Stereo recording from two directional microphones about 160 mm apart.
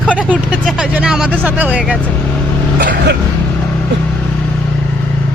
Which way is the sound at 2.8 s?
90° right.